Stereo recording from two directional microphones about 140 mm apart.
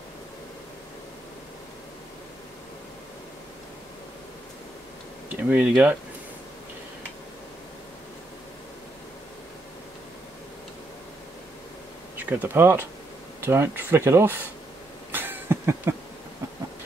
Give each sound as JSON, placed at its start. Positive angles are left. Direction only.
{"t": 5.3, "sound": "speech", "side_deg": -10}
{"t": 12.2, "sound": "speech", "side_deg": -10}
{"t": 15.0, "sound": "a sound", "side_deg": -15}